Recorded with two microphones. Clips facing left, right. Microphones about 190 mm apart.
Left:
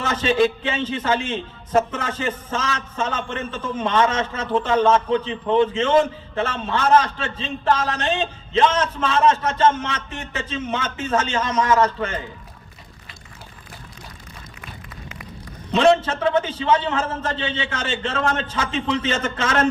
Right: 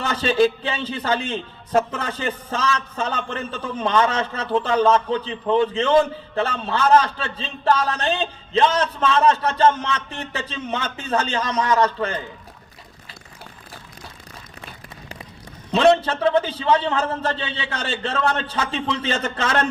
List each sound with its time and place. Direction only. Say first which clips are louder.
0.0 s music: left 1 dB; 35° right (ahead or behind)
0.4 s a man's voice: even; 35° right (ahead or behind)
15.7 s a man's voice: even; 35° right (ahead or behind)